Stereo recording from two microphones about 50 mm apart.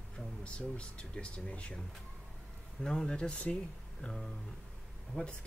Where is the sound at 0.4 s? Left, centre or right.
Left.